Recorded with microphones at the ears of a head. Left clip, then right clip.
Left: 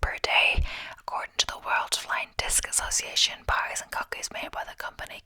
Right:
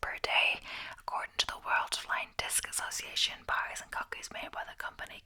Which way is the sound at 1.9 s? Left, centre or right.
Left.